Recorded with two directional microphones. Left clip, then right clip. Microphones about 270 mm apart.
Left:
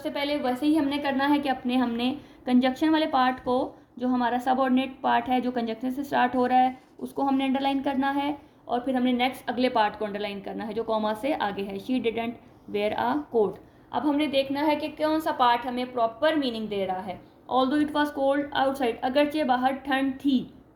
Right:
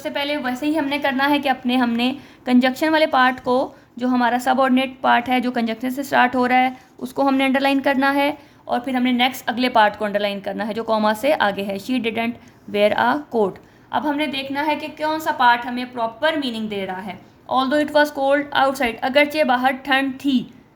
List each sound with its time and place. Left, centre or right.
0.0 s a woman's voice: right
14.5 s a woman's voice: right
15.0 s a woman's voice: right